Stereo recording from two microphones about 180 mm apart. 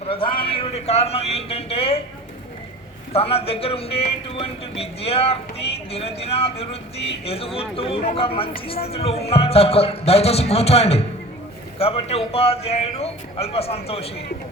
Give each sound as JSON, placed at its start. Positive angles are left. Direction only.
{"t": 0.1, "sound": "a man's voice", "side_deg": 30}
{"t": 3.1, "sound": "a man's voice", "side_deg": 35}